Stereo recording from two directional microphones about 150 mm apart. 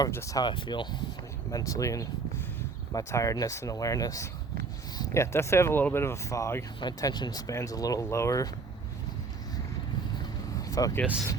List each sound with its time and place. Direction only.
0.1 s speech: 20° left (ahead or behind)
10.6 s vehicle: 25° left (ahead or behind)